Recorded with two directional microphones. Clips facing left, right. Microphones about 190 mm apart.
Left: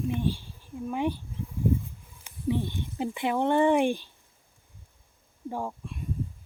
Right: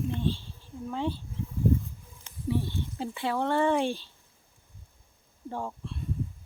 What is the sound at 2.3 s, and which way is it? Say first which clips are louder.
Speech: left 2 dB; 20° left (ahead or behind).